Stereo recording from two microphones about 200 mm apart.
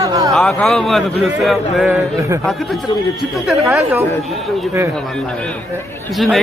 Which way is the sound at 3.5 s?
Centre (ahead or behind).